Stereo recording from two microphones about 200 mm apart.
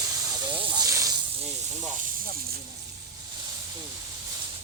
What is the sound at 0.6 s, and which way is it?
Hiss, 20° right (ahead or behind).